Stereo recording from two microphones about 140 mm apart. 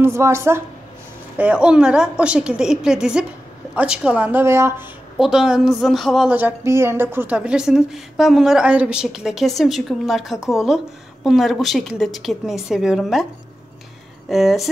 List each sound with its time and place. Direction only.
0.0 s a woman's voice: 20° right (ahead or behind)
1.4 s a woman's voice: 10° right (ahead or behind)
5.2 s a woman's voice: 5° right (ahead or behind)
6.3 s a woman's voice: 15° right (ahead or behind)
14.3 s a woman's voice: centre (ahead or behind)